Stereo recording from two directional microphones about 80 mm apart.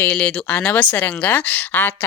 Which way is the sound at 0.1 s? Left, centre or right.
Centre.